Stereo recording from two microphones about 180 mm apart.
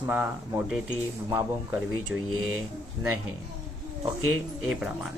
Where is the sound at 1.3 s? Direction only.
15° right (ahead or behind).